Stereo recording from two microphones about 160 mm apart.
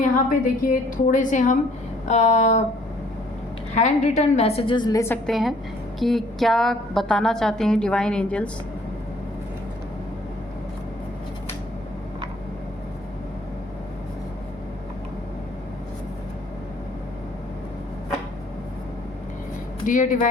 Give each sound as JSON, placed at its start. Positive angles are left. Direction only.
{"t": 0.0, "sound": "a woman's voice", "side_deg": 60}
{"t": 3.8, "sound": "a woman's voice", "side_deg": 45}
{"t": 5.2, "sound": "a woman's voice", "side_deg": 0}
{"t": 19.8, "sound": "speech", "side_deg": 55}